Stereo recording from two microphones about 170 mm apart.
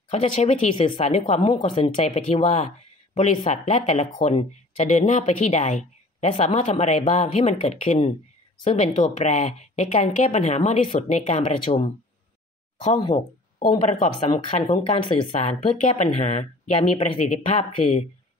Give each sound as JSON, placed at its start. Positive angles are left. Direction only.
{"t": 0.1, "sound": "speech", "side_deg": 40}